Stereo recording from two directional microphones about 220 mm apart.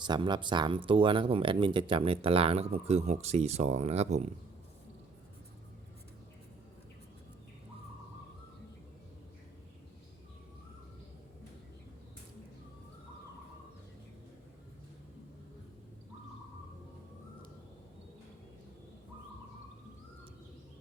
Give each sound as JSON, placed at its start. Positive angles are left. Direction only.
{"t": 0.0, "sound": "speech", "side_deg": -20}